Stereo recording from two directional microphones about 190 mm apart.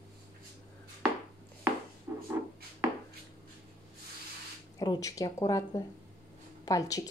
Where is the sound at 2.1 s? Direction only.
15° right (ahead or behind).